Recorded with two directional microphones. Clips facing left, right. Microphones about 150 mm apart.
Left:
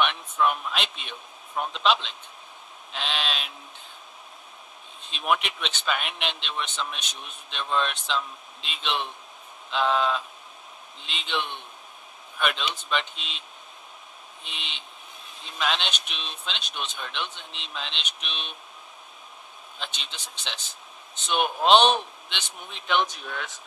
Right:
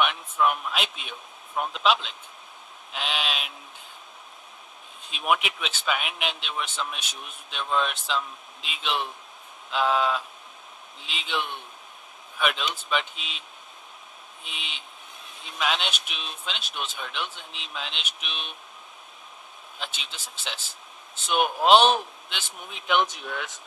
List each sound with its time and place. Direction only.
0.0 s a man's voice: centre (ahead or behind)
5.1 s speech: 5° right (ahead or behind)
14.4 s speech: centre (ahead or behind)
19.8 s speech: centre (ahead or behind)